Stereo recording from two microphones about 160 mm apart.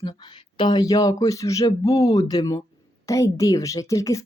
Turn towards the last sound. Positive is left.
turn(degrees=20)  # may be behind; listen again after turning